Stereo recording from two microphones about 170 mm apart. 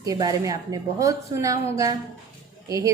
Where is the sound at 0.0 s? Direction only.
20° right (ahead or behind).